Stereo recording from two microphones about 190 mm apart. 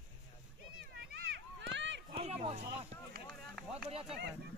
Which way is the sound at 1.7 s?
70° right (ahead or behind).